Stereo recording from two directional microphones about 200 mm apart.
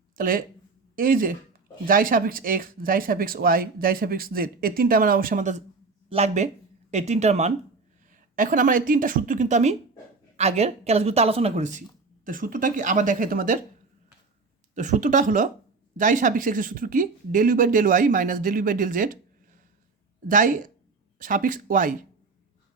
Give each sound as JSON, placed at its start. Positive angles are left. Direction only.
{"t": 0.2, "sound": "speech", "side_deg": -45}
{"t": 14.8, "sound": "speech", "side_deg": -40}
{"t": 20.2, "sound": "speech", "side_deg": -40}